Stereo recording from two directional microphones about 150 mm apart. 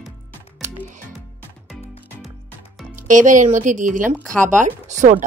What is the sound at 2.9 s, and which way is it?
Speech, 60° right (ahead or behind).